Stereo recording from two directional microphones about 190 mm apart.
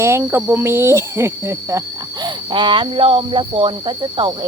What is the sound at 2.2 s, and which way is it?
Speech, 25° right (ahead or behind).